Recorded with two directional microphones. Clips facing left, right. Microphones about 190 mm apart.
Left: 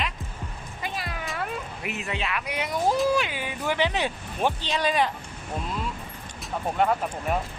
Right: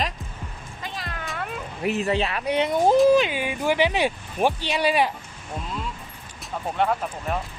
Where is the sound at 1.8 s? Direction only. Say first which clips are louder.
Right 11 dB; 35° right (ahead or behind).